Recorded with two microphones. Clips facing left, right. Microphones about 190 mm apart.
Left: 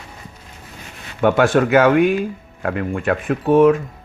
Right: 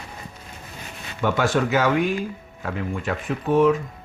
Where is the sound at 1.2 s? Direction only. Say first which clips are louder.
Left 7 dB; 60° left (ahead or behind).